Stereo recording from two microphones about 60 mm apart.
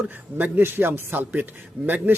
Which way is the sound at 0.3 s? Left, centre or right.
Right.